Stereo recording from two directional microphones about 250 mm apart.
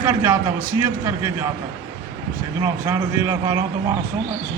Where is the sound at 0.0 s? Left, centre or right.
Centre.